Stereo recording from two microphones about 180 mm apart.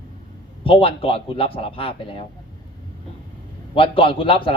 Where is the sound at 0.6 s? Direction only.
30° left (ahead or behind).